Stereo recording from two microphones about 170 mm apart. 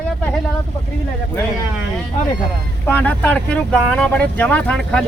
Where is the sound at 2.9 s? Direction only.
10° left (ahead or behind).